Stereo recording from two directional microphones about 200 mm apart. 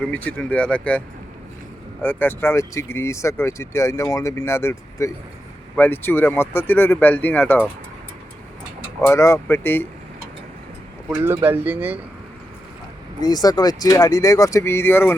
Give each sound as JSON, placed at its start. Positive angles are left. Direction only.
{"t": 0.0, "sound": "speech", "side_deg": 5}
{"t": 9.0, "sound": "speech", "side_deg": 15}
{"t": 11.1, "sound": "speech", "side_deg": -10}
{"t": 13.2, "sound": "speech", "side_deg": 20}